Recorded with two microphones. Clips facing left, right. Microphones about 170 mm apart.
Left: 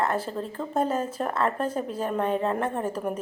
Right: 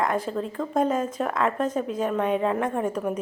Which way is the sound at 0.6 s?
5° left (ahead or behind).